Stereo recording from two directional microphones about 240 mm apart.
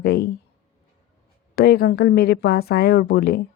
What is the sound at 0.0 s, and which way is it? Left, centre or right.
Speech, left.